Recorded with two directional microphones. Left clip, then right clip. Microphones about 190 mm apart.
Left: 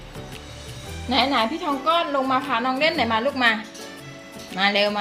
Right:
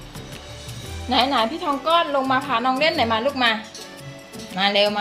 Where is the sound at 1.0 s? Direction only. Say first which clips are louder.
Right 1 dB; 15° right (ahead or behind).